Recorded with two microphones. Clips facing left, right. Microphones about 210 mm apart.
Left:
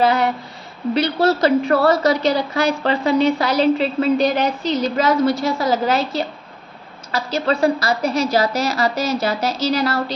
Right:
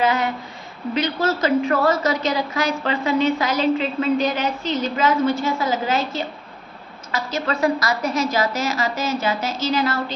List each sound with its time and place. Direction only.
0.0 s a woman's voice: 35° left (ahead or behind)